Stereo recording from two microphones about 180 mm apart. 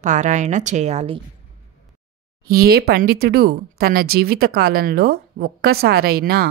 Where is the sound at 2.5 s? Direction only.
55° right (ahead or behind).